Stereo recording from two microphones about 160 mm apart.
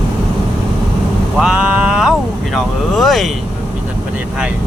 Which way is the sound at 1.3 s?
5° right (ahead or behind).